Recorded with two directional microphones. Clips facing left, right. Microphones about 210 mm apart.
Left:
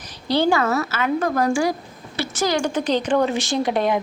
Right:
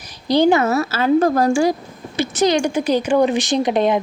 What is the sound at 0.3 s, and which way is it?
A woman's voice, 15° right (ahead or behind).